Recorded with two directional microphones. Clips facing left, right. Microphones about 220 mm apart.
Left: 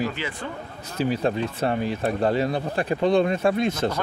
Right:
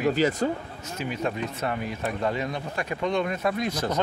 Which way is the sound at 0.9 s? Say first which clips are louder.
Left 6 dB; 35° left (ahead or behind).